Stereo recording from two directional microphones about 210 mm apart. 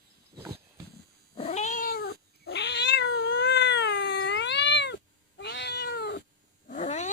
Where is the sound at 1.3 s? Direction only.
30° left (ahead or behind); by 6.2 s 50° left (ahead or behind).